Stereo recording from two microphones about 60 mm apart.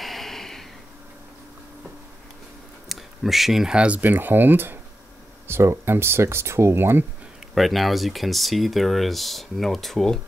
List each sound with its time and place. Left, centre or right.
0.0 s a sound: centre
2.9 s a sound: centre
3.7 s speech: centre
4.0 s speech: right
5.5 s speech: right
7.5 s speech: centre